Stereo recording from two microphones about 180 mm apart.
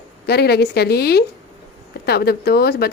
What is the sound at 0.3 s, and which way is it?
Speech, 65° left (ahead or behind).